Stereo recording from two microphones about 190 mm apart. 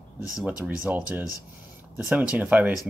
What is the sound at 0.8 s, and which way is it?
Speech, 10° right (ahead or behind).